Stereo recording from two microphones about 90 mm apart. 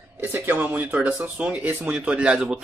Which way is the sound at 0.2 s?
25° right (ahead or behind).